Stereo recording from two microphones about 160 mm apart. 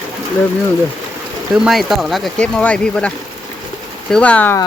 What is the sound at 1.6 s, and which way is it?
Speech, centre (ahead or behind).